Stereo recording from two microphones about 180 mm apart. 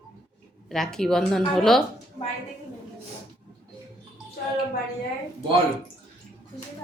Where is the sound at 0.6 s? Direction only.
Centre (ahead or behind).